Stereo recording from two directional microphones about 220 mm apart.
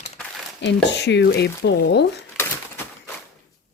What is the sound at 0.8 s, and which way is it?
Speech, 50° left (ahead or behind).